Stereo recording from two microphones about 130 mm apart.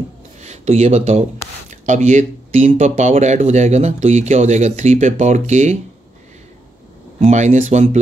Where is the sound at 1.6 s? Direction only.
70° right (ahead or behind).